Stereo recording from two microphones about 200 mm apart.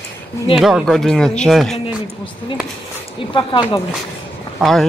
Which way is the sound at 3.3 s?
25° left (ahead or behind).